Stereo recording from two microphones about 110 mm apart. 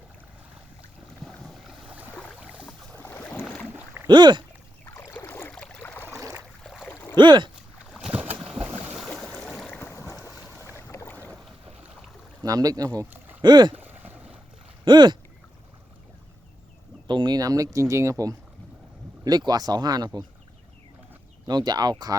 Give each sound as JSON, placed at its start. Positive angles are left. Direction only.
{"t": 1.2, "sound": "boat", "side_deg": 0}
{"t": 2.9, "sound": "boat", "side_deg": 20}
{"t": 4.0, "sound": "speech", "side_deg": -45}
{"t": 4.9, "sound": "boat", "side_deg": 25}
{"t": 5.5, "sound": "a sound", "side_deg": 10}
{"t": 7.2, "sound": "speech", "side_deg": -45}
{"t": 7.9, "sound": "boat", "side_deg": -5}
{"t": 9.0, "sound": "boat", "side_deg": 0}
{"t": 9.6, "sound": "boat", "side_deg": 20}
{"t": 12.4, "sound": "speech", "side_deg": -35}
{"t": 13.7, "sound": "boat", "side_deg": -15}
{"t": 14.8, "sound": "speech", "side_deg": -40}
{"t": 17.1, "sound": "speech", "side_deg": -40}
{"t": 21.4, "sound": "speech", "side_deg": -40}